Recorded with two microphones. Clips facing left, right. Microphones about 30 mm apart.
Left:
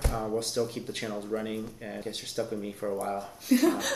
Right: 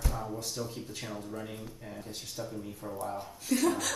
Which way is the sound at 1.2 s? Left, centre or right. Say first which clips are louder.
Left 7 dB; left.